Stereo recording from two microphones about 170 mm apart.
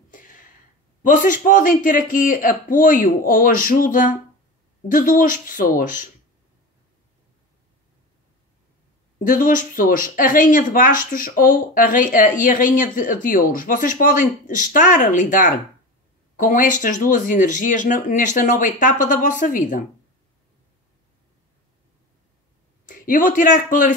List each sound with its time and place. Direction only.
0.1 s a sound: 50° left (ahead or behind)
1.0 s speech: 50° left (ahead or behind)
9.2 s speech: 50° left (ahead or behind)
22.8 s speech: 55° left (ahead or behind)